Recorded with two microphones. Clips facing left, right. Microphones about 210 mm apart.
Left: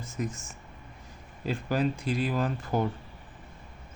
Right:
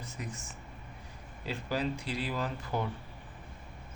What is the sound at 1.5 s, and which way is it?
Speech, 50° left (ahead or behind).